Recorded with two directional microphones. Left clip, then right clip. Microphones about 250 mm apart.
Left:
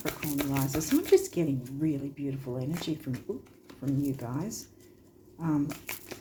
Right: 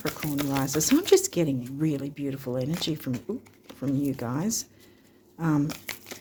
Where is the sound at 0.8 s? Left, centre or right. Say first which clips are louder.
Right 3 dB; right.